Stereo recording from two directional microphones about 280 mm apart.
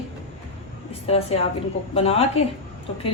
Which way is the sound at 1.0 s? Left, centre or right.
Left.